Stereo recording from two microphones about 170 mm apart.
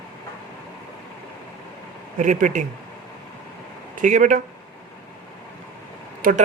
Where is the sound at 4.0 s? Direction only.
50° right (ahead or behind).